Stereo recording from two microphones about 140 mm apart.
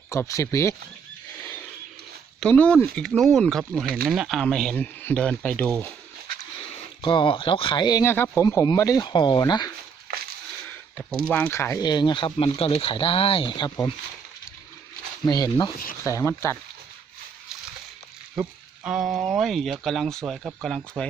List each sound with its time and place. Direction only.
0.1 s speech: 20° left (ahead or behind)
2.4 s speech: 10° left (ahead or behind)
3.8 s speech: 90° right
4.1 s speech: centre (ahead or behind)
7.0 s speech: 35° left (ahead or behind)
8.0 s speech: 15° left (ahead or behind)
10.7 s a sound: 10° left (ahead or behind)
11.3 s speech: 10° left (ahead or behind)
11.8 s speech: 30° left (ahead or behind)
15.3 s speech: 30° left (ahead or behind)
18.4 s speech: 5° right (ahead or behind)